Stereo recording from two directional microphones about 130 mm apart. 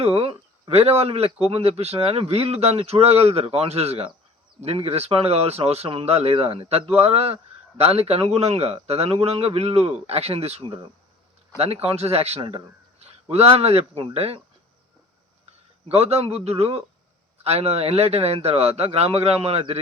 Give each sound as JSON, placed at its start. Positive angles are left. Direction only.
{"t": 0.0, "sound": "speech", "side_deg": -50}
{"t": 15.9, "sound": "speech", "side_deg": -50}